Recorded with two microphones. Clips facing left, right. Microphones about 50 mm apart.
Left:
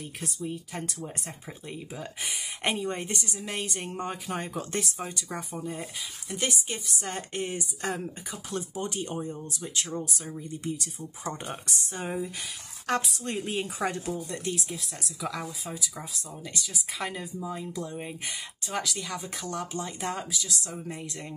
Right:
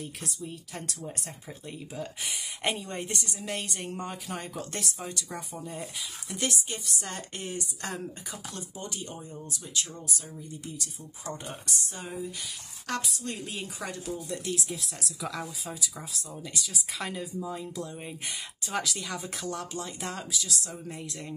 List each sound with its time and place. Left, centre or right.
0.5 s speech: centre
3.4 s speech: centre
3.9 s speech: centre
7.2 s speech: left
8.5 s speech: left
13.7 s speech: left
14.1 s speech: centre
18.2 s speech: centre